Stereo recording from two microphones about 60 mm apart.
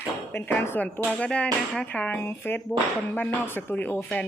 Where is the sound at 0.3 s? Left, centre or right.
Left.